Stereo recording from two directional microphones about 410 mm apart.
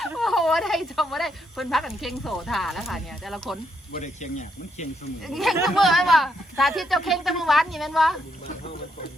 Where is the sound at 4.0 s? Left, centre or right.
Centre.